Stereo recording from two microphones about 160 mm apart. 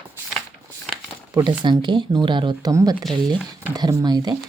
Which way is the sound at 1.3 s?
30° right (ahead or behind).